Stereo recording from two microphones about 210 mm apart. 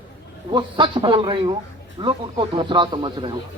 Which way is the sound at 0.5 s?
25° right (ahead or behind).